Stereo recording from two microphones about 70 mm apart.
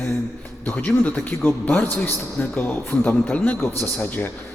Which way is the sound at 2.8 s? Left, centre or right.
Left.